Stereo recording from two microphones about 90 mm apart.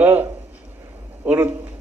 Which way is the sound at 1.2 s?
20° right (ahead or behind).